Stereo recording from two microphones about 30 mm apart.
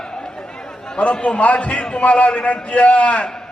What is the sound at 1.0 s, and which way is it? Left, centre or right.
A man's voice, left.